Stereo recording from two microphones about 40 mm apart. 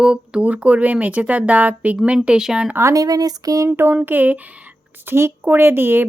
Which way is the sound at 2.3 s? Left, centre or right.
Right.